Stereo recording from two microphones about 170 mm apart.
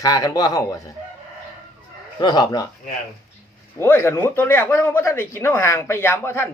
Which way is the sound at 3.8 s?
15° left (ahead or behind).